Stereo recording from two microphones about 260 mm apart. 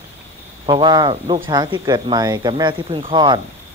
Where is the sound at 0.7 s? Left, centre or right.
Centre.